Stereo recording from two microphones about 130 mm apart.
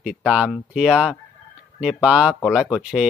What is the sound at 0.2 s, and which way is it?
Speech, 5° right (ahead or behind).